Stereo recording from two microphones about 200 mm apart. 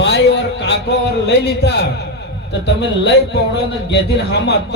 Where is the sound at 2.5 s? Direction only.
60° left (ahead or behind).